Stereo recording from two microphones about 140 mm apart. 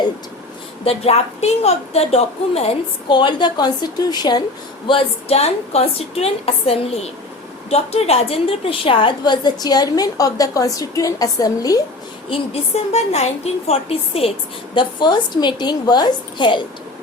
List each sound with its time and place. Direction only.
0.9 s a woman's voice: 45° left (ahead or behind)
3.1 s a woman's voice: 35° left (ahead or behind)
4.9 s a woman's voice: 45° left (ahead or behind); by 11.8 s 25° left (ahead or behind)
12.3 s a woman's voice: 50° left (ahead or behind)
14.8 s a woman's voice: 35° left (ahead or behind)